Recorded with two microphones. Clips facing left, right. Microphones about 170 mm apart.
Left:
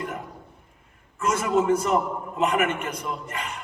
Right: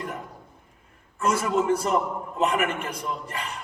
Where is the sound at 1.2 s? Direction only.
35° right (ahead or behind).